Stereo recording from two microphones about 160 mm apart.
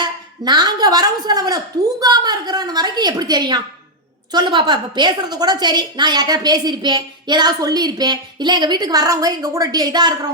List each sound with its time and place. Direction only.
0.0 s a woman's voice: 25° right (ahead or behind)